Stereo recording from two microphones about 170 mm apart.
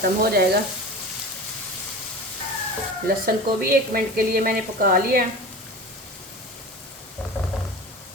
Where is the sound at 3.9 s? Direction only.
55° right (ahead or behind).